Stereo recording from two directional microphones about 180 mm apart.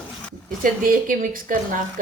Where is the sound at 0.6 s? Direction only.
50° right (ahead or behind).